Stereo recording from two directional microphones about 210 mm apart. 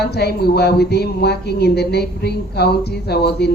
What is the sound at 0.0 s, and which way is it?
Speech, 50° left (ahead or behind).